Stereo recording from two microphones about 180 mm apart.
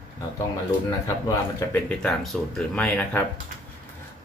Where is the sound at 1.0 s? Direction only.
15° left (ahead or behind).